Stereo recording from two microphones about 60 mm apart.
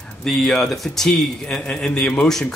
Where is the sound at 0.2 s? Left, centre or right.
Centre.